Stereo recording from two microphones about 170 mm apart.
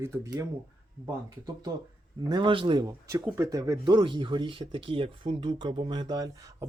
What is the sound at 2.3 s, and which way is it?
Speech, 30° right (ahead or behind).